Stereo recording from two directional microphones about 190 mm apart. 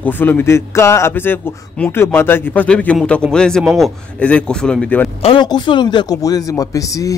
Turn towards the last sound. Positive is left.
turn(degrees=20)  # may be behind; listen again after turning